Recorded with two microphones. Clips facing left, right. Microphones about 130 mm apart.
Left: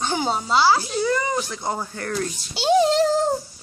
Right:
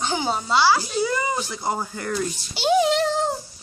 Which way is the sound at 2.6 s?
35° left (ahead or behind).